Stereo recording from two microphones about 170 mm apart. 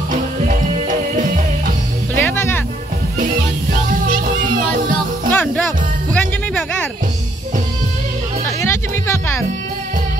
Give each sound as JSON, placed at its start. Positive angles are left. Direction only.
{"t": 0.1, "sound": "music", "side_deg": -50}
{"t": 2.1, "sound": "music", "side_deg": 10}
{"t": 5.3, "sound": "music", "side_deg": 10}
{"t": 8.5, "sound": "music", "side_deg": 15}